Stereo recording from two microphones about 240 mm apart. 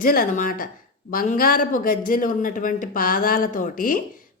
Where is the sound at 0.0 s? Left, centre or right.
Left.